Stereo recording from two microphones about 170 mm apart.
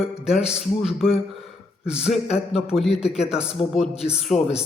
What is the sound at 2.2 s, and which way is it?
Speech, 35° left (ahead or behind).